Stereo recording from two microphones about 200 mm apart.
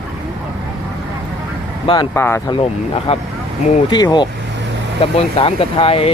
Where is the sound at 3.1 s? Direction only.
30° left (ahead or behind).